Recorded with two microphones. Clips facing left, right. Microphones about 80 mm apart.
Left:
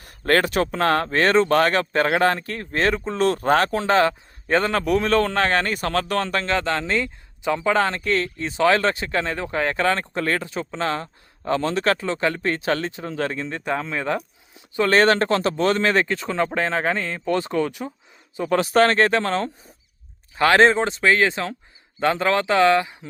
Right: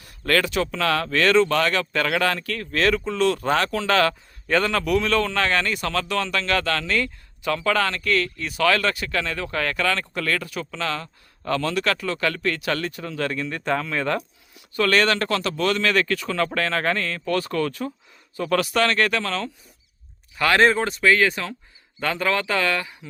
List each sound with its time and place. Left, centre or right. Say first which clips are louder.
0.0 s speech: left 2 dB; left
6.5 s speech: even; left